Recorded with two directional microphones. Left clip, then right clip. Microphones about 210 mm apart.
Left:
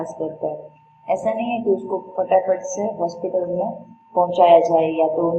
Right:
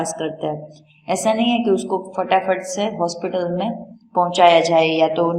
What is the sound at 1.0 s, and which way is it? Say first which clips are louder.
A man's voice: right 3 dB; 35° right (ahead or behind).